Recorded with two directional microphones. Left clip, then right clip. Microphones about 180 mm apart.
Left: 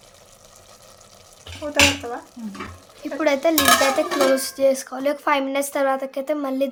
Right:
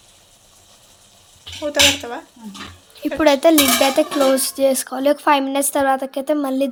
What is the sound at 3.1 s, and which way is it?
Speech, 30° right (ahead or behind).